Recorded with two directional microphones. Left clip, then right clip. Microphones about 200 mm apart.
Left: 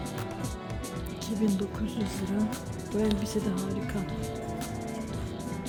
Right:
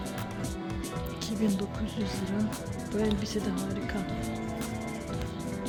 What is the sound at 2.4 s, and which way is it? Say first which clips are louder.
Speech: left 1 dB; centre (ahead or behind).